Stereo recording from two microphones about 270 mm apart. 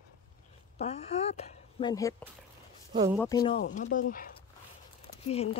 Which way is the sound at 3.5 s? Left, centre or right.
Left.